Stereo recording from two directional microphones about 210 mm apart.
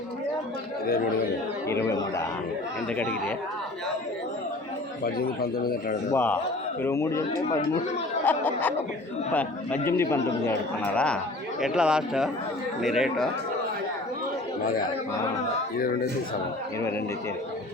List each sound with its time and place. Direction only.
1.6 s a man's voice: 15° left (ahead or behind)
5.0 s speech: 45° left (ahead or behind)
6.1 s a man's voice: 10° left (ahead or behind)
8.2 s a man's voice: 10° left (ahead or behind)
14.6 s speech: 40° left (ahead or behind)